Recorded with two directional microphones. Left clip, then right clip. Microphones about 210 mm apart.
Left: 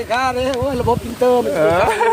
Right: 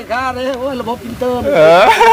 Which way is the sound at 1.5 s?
55° right (ahead or behind).